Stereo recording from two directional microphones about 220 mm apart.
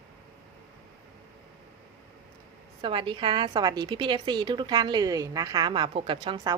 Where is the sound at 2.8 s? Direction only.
20° right (ahead or behind).